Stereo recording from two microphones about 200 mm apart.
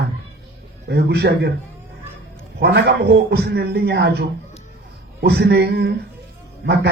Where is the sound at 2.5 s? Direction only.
55° right (ahead or behind).